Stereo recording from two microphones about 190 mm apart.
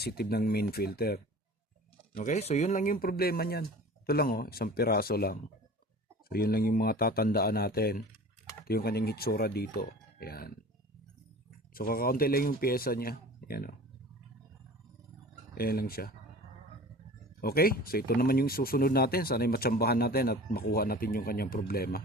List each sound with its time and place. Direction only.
0.0 s speech: 55° left (ahead or behind)
2.1 s speech: 40° left (ahead or behind)
11.7 s speech: 50° left (ahead or behind)
15.5 s speech: 50° left (ahead or behind)
17.4 s speech: 50° left (ahead or behind)